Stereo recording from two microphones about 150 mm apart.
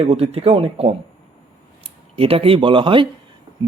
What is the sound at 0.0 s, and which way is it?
Speech, 40° right (ahead or behind).